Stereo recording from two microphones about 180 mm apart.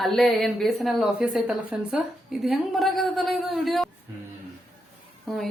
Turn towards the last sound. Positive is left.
turn(degrees=0)  # may be behind; listen again after turning